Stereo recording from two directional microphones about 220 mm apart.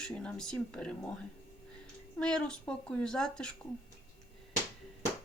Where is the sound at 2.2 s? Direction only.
5° left (ahead or behind).